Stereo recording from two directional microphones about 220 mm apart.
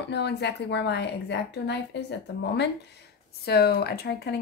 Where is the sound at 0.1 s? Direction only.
50° left (ahead or behind).